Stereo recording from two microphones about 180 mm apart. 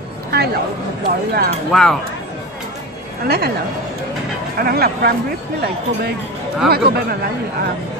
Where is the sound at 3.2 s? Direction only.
60° right (ahead or behind).